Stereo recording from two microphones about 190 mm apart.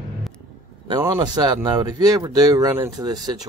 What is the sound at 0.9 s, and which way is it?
Speech, 20° right (ahead or behind).